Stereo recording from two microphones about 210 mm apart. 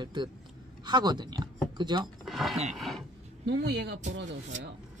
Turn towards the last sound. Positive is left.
turn(degrees=-55)  # may be behind; listen again after turning